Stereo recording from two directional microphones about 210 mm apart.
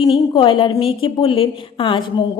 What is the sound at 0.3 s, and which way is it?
A woman's voice, 25° left (ahead or behind).